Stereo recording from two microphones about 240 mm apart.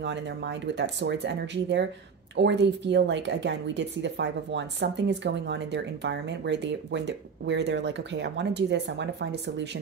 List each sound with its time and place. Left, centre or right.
0.0 s speech: right